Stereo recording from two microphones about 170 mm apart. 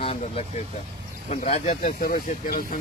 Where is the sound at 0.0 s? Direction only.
35° left (ahead or behind).